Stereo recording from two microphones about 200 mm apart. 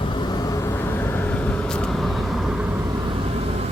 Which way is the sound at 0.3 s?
15° left (ahead or behind).